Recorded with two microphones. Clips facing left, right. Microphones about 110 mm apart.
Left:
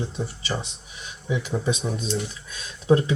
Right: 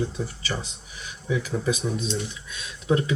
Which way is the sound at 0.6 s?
25° left (ahead or behind).